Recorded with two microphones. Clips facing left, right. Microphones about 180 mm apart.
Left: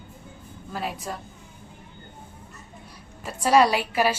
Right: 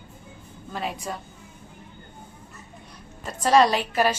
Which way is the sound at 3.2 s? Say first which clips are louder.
Even; 10° left (ahead or behind).